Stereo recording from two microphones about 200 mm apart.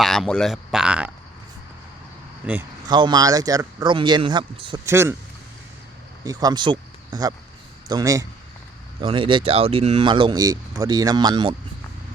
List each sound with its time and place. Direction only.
0.0 s speech: centre (ahead or behind)
2.5 s speech: 10° right (ahead or behind)
2.9 s speech: 20° right (ahead or behind)
6.2 s speech: 20° right (ahead or behind)